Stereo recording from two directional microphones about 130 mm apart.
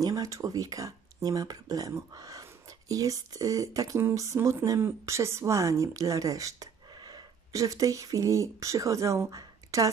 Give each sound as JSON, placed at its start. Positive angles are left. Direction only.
{"t": 0.0, "sound": "speech", "side_deg": -25}